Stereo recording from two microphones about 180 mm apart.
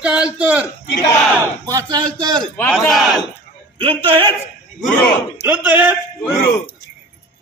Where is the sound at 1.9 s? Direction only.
25° right (ahead or behind).